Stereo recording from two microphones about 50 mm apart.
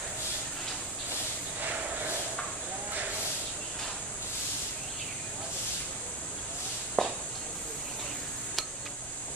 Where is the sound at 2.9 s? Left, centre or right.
Right.